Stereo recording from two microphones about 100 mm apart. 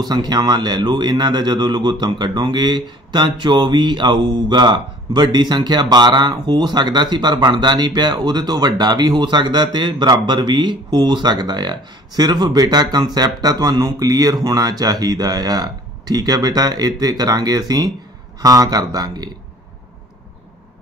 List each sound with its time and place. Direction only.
0.0 s speech: 45° right (ahead or behind)